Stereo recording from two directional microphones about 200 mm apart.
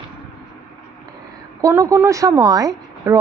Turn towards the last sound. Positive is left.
turn(degrees=-15)  # may be behind; listen again after turning